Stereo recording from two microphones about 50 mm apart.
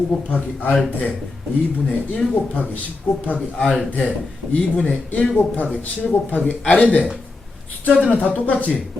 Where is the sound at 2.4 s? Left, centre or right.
Left.